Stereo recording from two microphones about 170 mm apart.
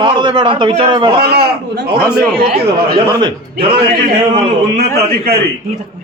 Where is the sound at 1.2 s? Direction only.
65° right (ahead or behind).